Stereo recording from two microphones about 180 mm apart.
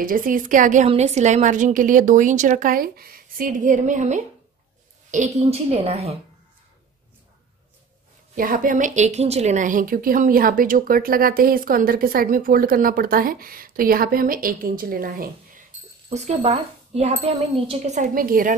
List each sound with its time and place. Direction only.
0.0 s a woman's voice: 50° right (ahead or behind); by 6.1 s 35° right (ahead or behind)
8.4 s a woman's voice: 50° right (ahead or behind)
16.1 s speech: 40° right (ahead or behind)